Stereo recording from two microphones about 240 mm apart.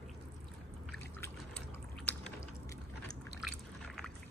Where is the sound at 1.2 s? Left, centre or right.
Centre.